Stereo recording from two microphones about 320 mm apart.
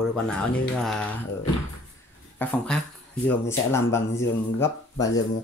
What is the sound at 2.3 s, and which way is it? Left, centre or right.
Speech, centre.